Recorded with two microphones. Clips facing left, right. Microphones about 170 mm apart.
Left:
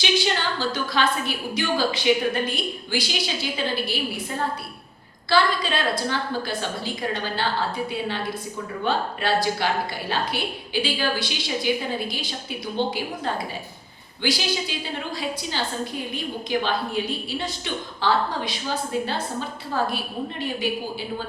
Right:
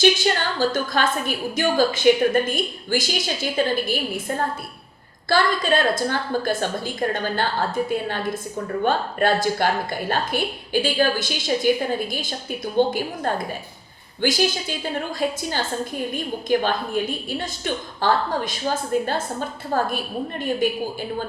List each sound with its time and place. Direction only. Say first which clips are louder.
0.6 s a woman's voice: right 4 dB; 50° right (ahead or behind)